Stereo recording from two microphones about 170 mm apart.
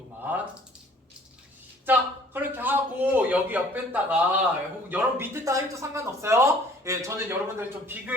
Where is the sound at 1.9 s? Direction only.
10° right (ahead or behind).